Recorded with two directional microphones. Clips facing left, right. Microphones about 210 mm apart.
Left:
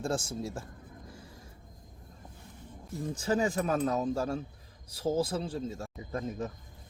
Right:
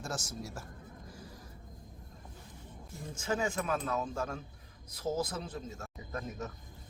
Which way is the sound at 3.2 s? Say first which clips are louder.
Left 4 dB; 35° left (ahead or behind).